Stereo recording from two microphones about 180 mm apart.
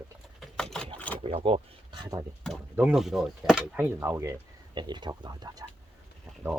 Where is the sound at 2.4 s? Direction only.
5° right (ahead or behind).